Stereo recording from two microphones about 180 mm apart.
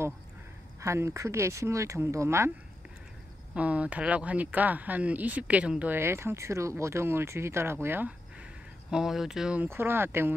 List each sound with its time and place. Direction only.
0.7 s speech: 15° right (ahead or behind)
3.5 s speech: 5° right (ahead or behind)